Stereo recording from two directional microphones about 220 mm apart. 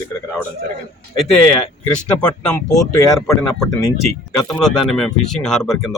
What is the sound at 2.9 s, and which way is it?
Speech, 15° left (ahead or behind).